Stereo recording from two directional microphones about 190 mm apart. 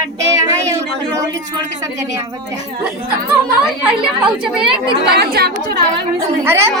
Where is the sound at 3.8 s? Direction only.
5° right (ahead or behind).